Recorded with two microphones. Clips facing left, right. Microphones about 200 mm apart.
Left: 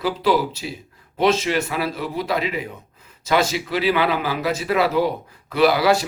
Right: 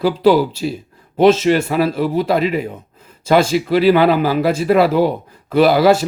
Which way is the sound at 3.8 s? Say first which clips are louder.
Right 8 dB; 40° right (ahead or behind).